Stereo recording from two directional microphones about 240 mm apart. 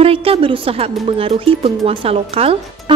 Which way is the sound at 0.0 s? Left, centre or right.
Right.